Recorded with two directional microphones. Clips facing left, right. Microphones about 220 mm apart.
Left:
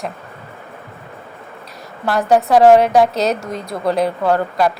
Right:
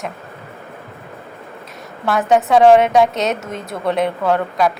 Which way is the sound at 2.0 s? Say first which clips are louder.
Left 1 dB; centre (ahead or behind).